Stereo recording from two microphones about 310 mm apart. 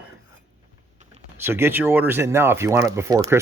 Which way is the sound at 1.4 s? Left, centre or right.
Centre.